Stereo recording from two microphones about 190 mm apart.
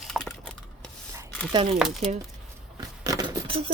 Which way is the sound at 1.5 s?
25° right (ahead or behind).